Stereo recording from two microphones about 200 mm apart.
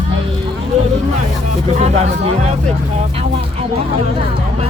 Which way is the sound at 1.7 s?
35° right (ahead or behind).